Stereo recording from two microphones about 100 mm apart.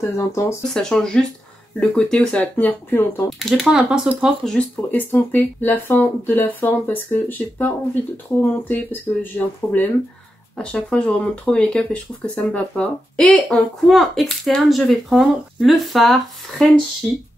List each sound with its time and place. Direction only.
0.3 s speech: 25° left (ahead or behind)
0.7 s speech: 5° left (ahead or behind)
3.3 s speech: centre (ahead or behind)
4.5 s speech: 15° left (ahead or behind)